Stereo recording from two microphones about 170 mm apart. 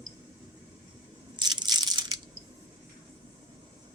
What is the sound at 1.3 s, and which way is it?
Crushing, 25° right (ahead or behind).